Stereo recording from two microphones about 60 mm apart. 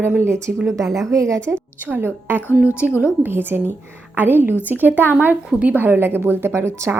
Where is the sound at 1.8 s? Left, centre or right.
Right.